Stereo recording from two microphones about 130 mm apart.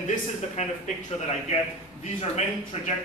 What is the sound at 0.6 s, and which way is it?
Speech, 60° left (ahead or behind).